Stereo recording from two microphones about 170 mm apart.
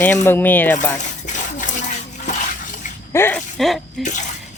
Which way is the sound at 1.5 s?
45° left (ahead or behind).